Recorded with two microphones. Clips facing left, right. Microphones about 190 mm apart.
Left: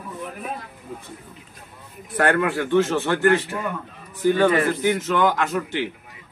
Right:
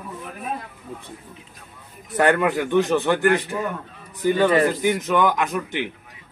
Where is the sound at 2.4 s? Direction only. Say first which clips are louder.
Even; 15° right (ahead or behind).